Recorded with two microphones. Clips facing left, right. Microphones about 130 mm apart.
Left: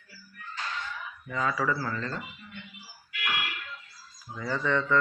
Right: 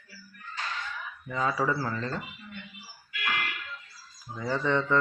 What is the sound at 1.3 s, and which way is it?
Speech, 25° right (ahead or behind).